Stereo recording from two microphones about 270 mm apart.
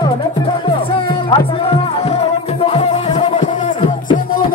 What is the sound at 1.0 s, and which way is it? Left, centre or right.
Music, centre.